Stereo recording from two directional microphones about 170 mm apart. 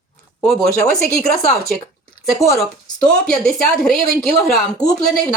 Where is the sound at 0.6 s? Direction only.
Centre (ahead or behind).